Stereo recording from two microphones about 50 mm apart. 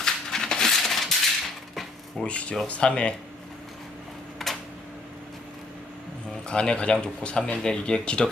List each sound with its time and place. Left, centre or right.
0.0 s crushing: centre
1.7 s dishes: centre
2.2 s speech: left
4.4 s a sound: centre
6.5 s speech: centre